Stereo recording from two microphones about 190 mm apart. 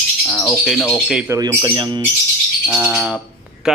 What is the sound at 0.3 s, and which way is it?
Speech, 10° left (ahead or behind).